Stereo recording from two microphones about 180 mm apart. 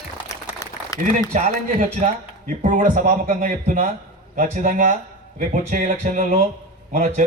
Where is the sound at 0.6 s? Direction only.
20° left (ahead or behind).